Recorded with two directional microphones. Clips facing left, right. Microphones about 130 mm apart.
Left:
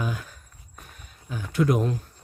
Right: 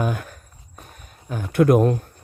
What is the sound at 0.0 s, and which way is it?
Walk, 55° right (ahead or behind).